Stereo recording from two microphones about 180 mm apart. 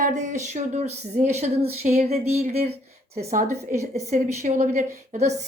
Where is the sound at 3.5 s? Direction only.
15° right (ahead or behind).